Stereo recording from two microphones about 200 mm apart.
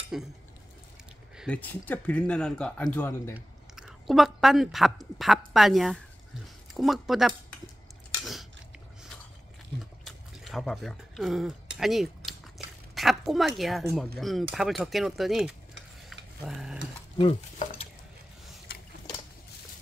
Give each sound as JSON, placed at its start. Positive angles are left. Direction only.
{"t": 0.1, "sound": "speech", "side_deg": 0}
{"t": 1.3, "sound": "a sound", "side_deg": -5}
{"t": 1.6, "sound": "speech", "side_deg": 10}
{"t": 3.3, "sound": "speech", "side_deg": -5}
{"t": 10.0, "sound": "a sound", "side_deg": 0}
{"t": 12.9, "sound": "a woman's voice", "side_deg": 0}
{"t": 16.1, "sound": "stir", "side_deg": 0}
{"t": 17.2, "sound": "stir", "side_deg": 30}